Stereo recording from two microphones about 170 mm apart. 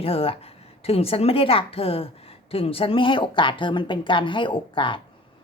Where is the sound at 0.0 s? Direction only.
35° left (ahead or behind).